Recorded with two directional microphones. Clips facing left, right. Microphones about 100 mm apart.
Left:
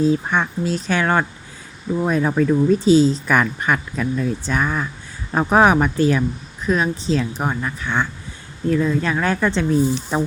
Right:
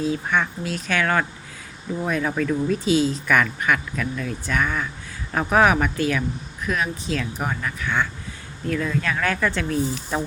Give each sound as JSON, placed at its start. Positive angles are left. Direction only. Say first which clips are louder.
{"t": 0.3, "sound": "speech", "louder": "left 3 dB", "side_deg": 30}